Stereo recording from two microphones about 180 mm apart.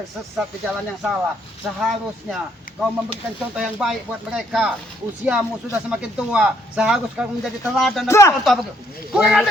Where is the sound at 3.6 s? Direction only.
Centre (ahead or behind).